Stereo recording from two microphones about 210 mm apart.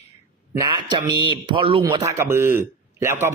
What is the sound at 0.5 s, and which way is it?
Speech, 20° right (ahead or behind).